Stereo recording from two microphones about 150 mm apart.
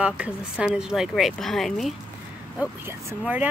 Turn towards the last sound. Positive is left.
turn(degrees=-10)  # may be behind; listen again after turning